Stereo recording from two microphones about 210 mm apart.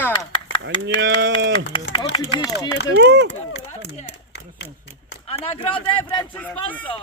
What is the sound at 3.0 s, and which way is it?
Speech, 55° right (ahead or behind).